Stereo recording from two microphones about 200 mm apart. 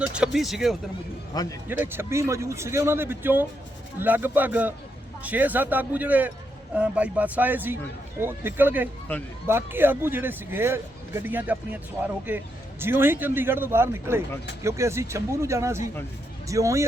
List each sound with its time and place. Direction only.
0.0 s speech: 5° right (ahead or behind)
1.3 s a man's voice: 20° left (ahead or behind)
1.6 s speech: 10° right (ahead or behind)